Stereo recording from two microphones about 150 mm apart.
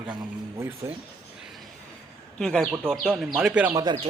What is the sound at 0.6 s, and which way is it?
Speech, 15° right (ahead or behind).